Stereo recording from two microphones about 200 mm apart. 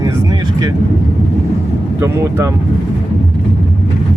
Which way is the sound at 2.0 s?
15° right (ahead or behind).